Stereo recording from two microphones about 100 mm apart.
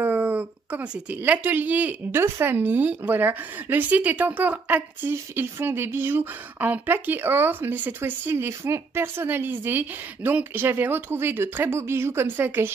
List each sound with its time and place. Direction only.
0.0 s a woman's voice: 20° right (ahead or behind)
2.2 s a woman's voice: 25° right (ahead or behind)